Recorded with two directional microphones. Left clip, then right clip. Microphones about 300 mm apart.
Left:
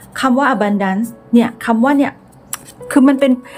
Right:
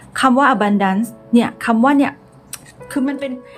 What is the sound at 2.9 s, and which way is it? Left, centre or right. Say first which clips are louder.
Speech: left 10 dB; centre.